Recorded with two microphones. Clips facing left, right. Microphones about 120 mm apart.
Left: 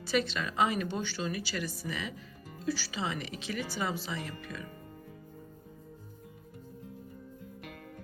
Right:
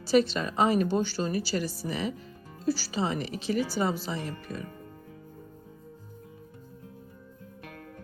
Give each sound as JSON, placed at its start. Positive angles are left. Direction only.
{"t": 0.0, "sound": "a woman's voice", "side_deg": -35}